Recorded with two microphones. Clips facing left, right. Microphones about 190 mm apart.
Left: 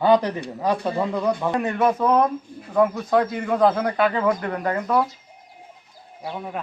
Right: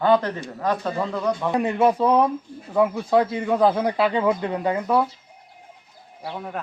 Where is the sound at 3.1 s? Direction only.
10° right (ahead or behind).